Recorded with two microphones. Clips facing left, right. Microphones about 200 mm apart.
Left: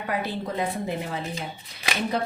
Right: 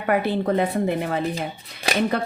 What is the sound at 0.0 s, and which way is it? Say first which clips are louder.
A woman's voice: right 7 dB; 60° right (ahead or behind).